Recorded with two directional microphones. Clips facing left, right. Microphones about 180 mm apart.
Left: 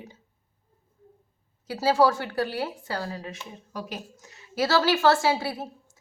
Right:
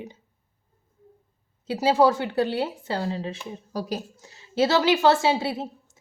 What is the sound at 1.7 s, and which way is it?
A woman's voice, 20° right (ahead or behind).